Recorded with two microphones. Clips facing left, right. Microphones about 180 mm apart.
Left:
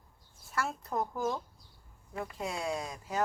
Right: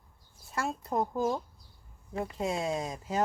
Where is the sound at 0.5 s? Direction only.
20° right (ahead or behind).